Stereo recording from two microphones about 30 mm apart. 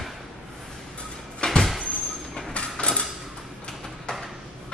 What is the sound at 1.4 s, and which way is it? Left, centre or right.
Vehicle, left.